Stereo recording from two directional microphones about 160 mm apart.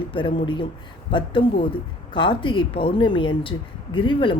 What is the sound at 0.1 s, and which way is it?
A woman's voice, 30° left (ahead or behind).